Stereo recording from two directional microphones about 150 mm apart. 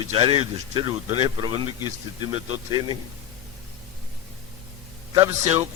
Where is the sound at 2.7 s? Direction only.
30° right (ahead or behind).